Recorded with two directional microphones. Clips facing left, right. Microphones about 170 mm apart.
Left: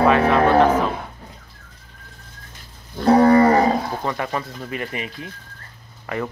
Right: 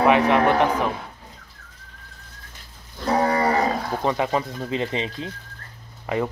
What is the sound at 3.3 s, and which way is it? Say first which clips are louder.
Cattle: left 9 dB; 55° left (ahead or behind).